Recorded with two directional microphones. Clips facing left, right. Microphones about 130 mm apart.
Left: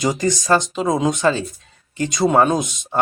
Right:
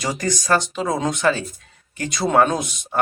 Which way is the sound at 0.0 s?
20° left (ahead or behind).